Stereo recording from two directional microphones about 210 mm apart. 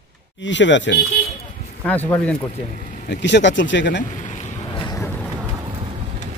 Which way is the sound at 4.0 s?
35° left (ahead or behind).